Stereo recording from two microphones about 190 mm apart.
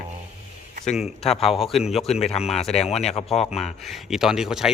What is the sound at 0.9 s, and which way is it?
Speech, centre (ahead or behind).